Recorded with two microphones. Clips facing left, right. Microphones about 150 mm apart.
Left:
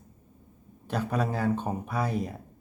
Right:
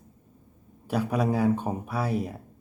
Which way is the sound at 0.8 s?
10° right (ahead or behind).